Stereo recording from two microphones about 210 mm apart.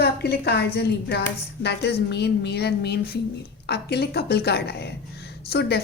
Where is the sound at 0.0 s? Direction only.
50° left (ahead or behind).